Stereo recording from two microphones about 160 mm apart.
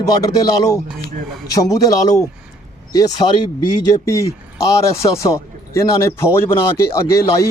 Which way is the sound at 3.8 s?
20° left (ahead or behind).